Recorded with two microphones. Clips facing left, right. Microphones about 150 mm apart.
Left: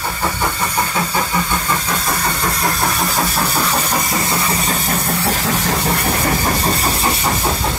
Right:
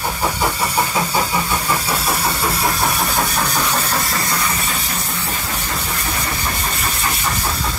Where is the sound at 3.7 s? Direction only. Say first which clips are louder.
Left 2 dB; 20° left (ahead or behind).